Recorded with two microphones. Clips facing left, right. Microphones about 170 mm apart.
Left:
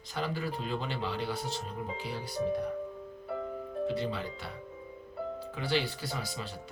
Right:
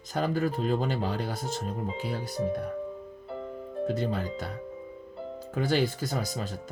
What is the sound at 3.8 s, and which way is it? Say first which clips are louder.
Speech: right 4 dB; 45° right (ahead or behind).